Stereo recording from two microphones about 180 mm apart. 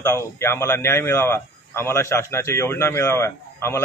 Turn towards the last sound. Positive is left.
turn(degrees=15)  # may be behind; listen again after turning